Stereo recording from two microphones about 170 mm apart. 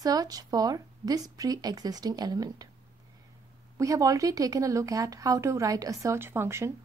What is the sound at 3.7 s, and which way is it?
Speech, 20° right (ahead or behind).